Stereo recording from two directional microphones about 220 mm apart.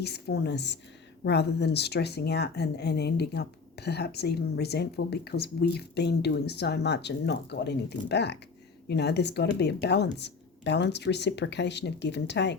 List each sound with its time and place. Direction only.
0.0 s speech: 50° left (ahead or behind)